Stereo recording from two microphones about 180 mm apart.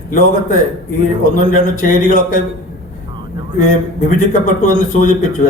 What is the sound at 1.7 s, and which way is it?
Speech, 50° left (ahead or behind).